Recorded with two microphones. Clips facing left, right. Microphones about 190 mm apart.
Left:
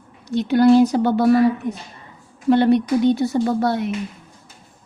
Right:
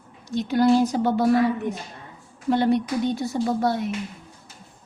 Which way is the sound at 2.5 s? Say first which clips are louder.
Left 6 dB; 70° left (ahead or behind).